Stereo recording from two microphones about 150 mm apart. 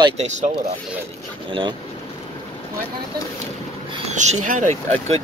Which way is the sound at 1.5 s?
35° right (ahead or behind).